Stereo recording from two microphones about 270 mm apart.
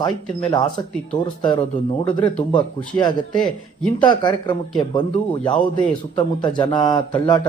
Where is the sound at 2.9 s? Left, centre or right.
Centre.